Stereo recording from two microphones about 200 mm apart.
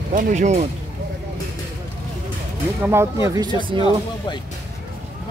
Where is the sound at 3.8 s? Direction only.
20° left (ahead or behind).